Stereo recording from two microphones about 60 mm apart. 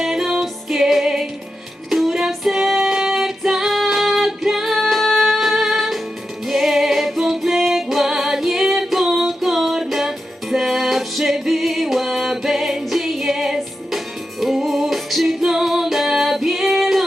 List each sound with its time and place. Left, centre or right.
0.0 s music: centre
1.9 s female singing: centre
6.5 s music: centre